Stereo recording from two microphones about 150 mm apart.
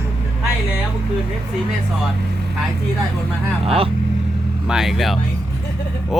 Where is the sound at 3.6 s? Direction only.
40° right (ahead or behind).